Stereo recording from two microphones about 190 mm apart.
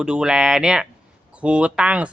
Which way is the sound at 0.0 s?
5° right (ahead or behind).